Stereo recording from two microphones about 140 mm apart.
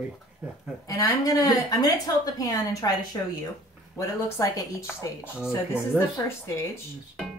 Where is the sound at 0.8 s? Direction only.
25° left (ahead or behind).